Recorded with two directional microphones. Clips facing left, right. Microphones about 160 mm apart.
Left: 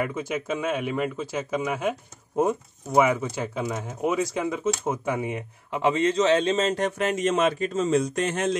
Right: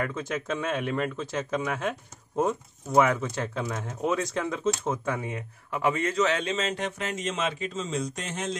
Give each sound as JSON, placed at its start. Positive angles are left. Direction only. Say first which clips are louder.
{"t": 0.0, "sound": "speech", "louder": "left 3 dB", "side_deg": 10}
{"t": 6.5, "sound": "speech", "louder": "left 6 dB", "side_deg": 40}
{"t": 7.0, "sound": "speech", "louder": "left 8 dB", "side_deg": 55}